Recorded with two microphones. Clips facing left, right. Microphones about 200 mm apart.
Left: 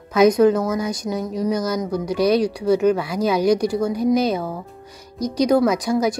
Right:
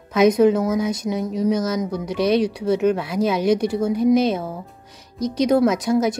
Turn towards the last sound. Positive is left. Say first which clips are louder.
# right 1 dB
turn(degrees=-5)  # may be behind; listen again after turning